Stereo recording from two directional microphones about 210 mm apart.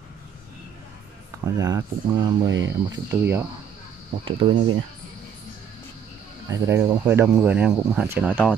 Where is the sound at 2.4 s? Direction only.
60° right (ahead or behind).